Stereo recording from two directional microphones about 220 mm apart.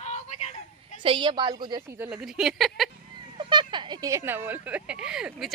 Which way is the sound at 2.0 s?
5° right (ahead or behind).